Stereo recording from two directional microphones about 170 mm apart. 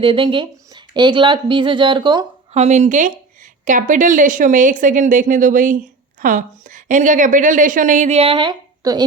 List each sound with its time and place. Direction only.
0.0 s speech: 30° right (ahead or behind)
2.6 s a woman's voice: 45° right (ahead or behind); by 9.0 s 25° right (ahead or behind)